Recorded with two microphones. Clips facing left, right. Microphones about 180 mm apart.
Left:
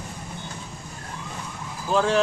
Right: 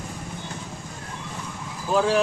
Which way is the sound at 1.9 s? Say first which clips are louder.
Even; 5° right (ahead or behind).